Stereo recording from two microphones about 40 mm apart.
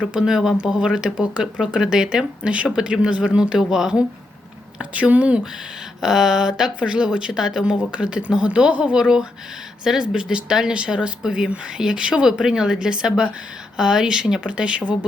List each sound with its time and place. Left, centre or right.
0.2 s speech: centre
0.5 s speech: right
4.8 s speech: right
6.0 s speech: centre
6.7 s speech: right
7.6 s speech: right